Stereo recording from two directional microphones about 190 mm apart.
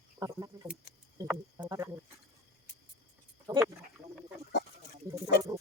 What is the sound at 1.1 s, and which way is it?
Frog, 15° right (ahead or behind).